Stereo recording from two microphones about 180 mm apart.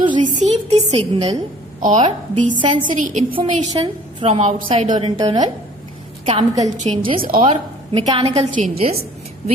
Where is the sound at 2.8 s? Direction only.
45° right (ahead or behind).